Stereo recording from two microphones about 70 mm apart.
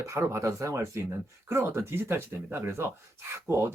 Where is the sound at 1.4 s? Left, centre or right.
Right.